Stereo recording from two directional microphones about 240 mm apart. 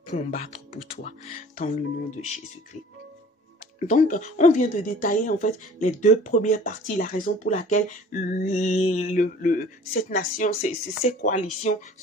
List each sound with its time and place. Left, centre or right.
0.1 s speech: left
1.6 s speech: left
3.9 s speech: left